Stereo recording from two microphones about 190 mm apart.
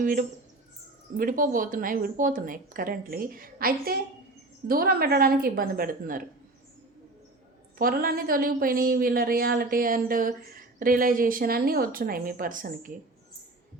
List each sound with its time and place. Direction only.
0.0 s a woman's voice: 45° right (ahead or behind)
7.8 s a woman's voice: 50° right (ahead or behind)